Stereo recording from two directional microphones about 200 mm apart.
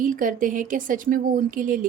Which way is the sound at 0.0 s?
40° right (ahead or behind).